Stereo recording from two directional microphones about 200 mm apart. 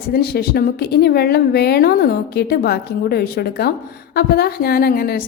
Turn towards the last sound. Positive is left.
turn(degrees=50)  # may be behind; listen again after turning